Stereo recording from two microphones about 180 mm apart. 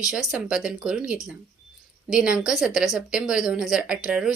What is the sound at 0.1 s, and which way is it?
A woman's voice, 5° right (ahead or behind).